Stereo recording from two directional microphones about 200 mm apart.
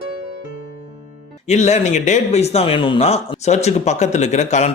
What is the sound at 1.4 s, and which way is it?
Speech, 35° left (ahead or behind).